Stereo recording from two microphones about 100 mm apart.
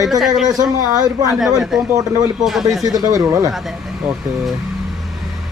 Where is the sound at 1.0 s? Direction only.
35° right (ahead or behind).